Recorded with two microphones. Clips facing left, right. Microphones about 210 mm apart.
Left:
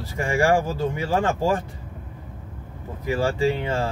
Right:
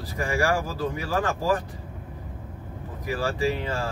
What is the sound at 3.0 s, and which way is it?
Speech, 25° left (ahead or behind).